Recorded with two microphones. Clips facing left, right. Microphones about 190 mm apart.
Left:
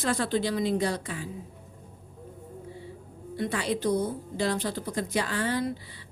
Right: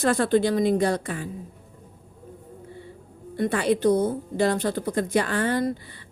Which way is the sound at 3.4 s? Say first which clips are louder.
Right 7 dB; 55° right (ahead or behind).